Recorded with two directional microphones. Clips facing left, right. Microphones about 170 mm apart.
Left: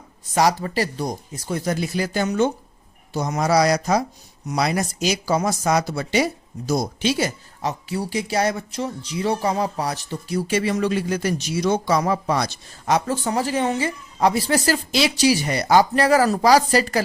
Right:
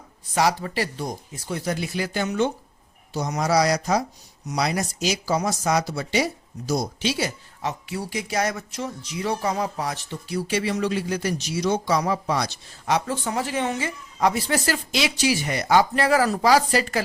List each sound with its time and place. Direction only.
0.3 s speech: 40° left (ahead or behind)
3.1 s speech: 55° left (ahead or behind)